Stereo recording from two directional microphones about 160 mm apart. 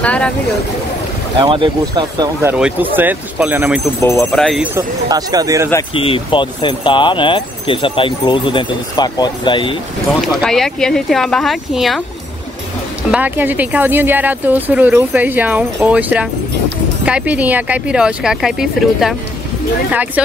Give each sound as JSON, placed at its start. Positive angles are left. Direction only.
{"t": 0.0, "sound": "speech", "side_deg": 10}
{"t": 1.4, "sound": "speech", "side_deg": -30}
{"t": 2.4, "sound": "speech", "side_deg": -10}
{"t": 4.0, "sound": "speech", "side_deg": 15}
{"t": 4.3, "sound": "speech", "side_deg": 0}
{"t": 4.7, "sound": "speech", "side_deg": -25}
{"t": 5.9, "sound": "speech", "side_deg": 35}
{"t": 10.0, "sound": "speech", "side_deg": 0}
{"t": 13.1, "sound": "speech", "side_deg": -10}